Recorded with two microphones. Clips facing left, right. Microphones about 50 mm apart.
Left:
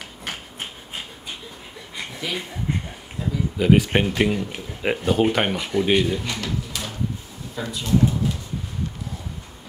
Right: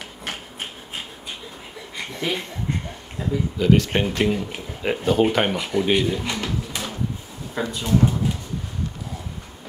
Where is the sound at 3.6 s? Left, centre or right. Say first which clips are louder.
Left 1 dB; centre.